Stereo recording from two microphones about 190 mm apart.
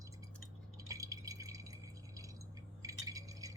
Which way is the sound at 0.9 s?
20° right (ahead or behind).